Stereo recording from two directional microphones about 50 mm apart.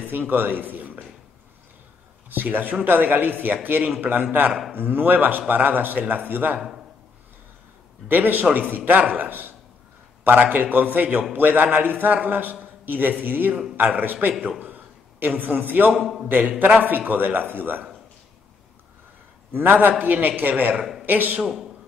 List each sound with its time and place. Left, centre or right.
0.3 s a man's voice: right
2.2 s a man's voice: right
8.1 s a man's voice: right
14.6 s a sound: right
15.9 s a man's voice: centre
16.3 s a man's voice: right
19.5 s a man's voice: right
21.4 s a man's voice: centre